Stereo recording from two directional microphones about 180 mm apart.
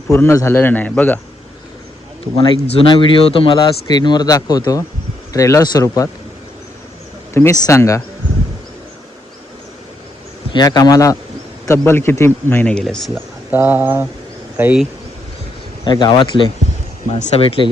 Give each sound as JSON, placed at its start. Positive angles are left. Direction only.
{"t": 0.1, "sound": "speech", "side_deg": 15}
{"t": 2.3, "sound": "speech", "side_deg": 25}
{"t": 7.3, "sound": "speech", "side_deg": 15}
{"t": 10.5, "sound": "speech", "side_deg": 20}
{"t": 13.5, "sound": "speech", "side_deg": -10}
{"t": 15.8, "sound": "speech", "side_deg": 25}